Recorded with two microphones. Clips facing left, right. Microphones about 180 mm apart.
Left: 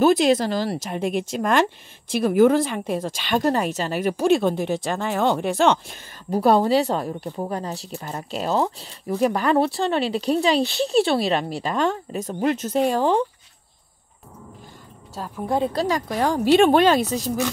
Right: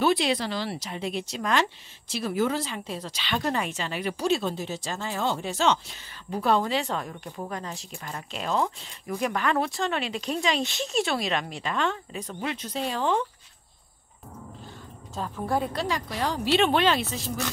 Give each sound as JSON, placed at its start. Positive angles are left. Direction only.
{"t": 0.0, "sound": "speech", "side_deg": 45}
{"t": 6.3, "sound": "speech", "side_deg": 40}
{"t": 15.4, "sound": "speech", "side_deg": 20}
{"t": 15.7, "sound": "speech", "side_deg": 40}